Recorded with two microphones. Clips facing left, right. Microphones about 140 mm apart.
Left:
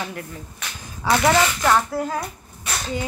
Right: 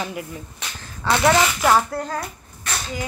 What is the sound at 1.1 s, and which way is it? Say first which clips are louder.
Speech: even; 10° left (ahead or behind).